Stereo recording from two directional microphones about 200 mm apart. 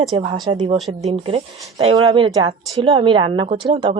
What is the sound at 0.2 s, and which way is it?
Speech, 20° right (ahead or behind).